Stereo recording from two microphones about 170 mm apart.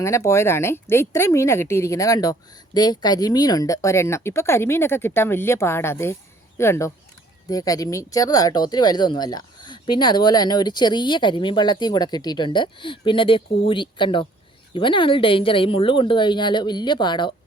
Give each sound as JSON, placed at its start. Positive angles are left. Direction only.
{"t": 0.0, "sound": "speech", "side_deg": 15}